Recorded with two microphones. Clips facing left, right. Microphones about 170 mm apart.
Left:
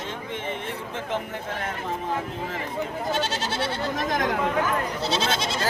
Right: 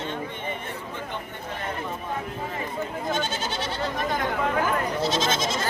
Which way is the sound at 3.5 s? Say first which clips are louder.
Left 3 dB; 90° left.